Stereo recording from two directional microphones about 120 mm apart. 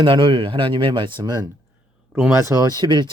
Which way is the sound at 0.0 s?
45° right (ahead or behind).